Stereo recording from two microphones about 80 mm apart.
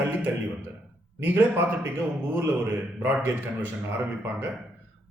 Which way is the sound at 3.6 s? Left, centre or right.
Right.